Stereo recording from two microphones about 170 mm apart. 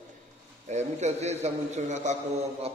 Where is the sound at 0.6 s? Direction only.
40° right (ahead or behind).